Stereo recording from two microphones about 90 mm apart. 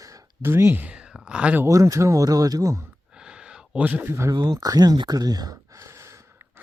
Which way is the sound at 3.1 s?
10° right (ahead or behind).